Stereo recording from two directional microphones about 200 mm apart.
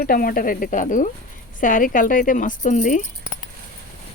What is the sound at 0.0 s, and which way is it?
Speech, 45° left (ahead or behind).